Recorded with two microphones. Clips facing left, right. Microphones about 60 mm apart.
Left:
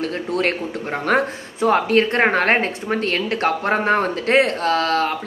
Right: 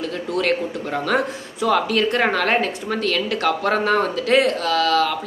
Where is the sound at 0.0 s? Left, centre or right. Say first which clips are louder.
Left 1 dB; left.